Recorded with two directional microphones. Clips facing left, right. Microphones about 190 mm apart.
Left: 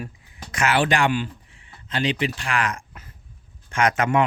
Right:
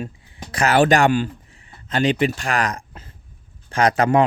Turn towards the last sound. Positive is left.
turn(degrees=-35)  # may be behind; listen again after turning